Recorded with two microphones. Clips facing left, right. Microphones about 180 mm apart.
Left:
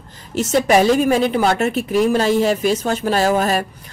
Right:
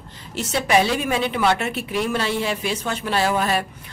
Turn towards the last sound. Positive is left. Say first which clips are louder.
# left 4 dB
turn(degrees=45)  # may be behind; listen again after turning